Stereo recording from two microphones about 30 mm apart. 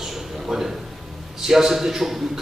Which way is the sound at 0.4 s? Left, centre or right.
Centre.